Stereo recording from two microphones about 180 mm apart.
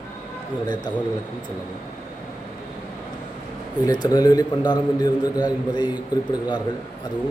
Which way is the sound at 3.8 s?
20° left (ahead or behind).